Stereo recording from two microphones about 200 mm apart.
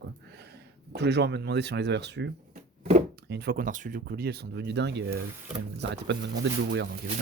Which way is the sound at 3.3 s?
55° right (ahead or behind).